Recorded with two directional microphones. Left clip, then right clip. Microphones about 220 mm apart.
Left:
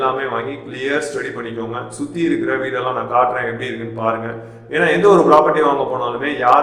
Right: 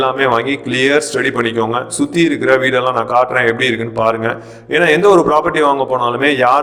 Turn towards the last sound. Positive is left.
turn(degrees=-45)  # may be behind; listen again after turning